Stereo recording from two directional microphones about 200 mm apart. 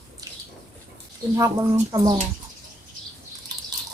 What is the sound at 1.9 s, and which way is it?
Speech, 20° right (ahead or behind).